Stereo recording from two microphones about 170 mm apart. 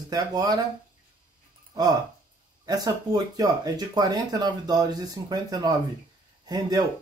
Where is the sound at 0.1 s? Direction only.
20° right (ahead or behind).